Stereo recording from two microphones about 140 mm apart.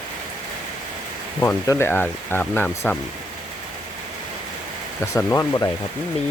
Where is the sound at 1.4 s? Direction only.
15° left (ahead or behind).